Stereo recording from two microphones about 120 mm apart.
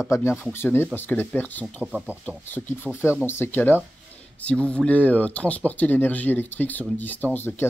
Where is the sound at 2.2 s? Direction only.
15° left (ahead or behind).